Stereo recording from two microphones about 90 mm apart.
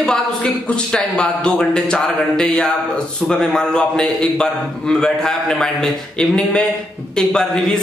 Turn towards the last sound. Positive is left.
turn(degrees=10)  # may be behind; listen again after turning